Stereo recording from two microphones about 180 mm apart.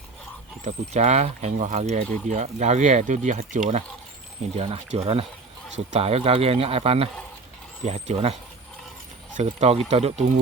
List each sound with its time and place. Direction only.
0.6 s speech: 40° right (ahead or behind)